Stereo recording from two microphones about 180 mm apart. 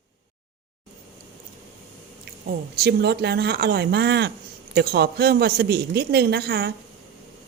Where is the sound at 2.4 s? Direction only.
65° right (ahead or behind).